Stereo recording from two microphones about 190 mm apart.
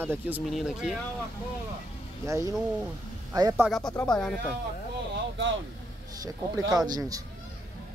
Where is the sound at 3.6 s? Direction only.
Centre (ahead or behind).